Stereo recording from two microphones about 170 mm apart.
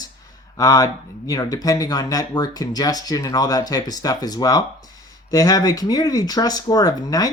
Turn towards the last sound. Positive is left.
turn(degrees=20)  # may be behind; listen again after turning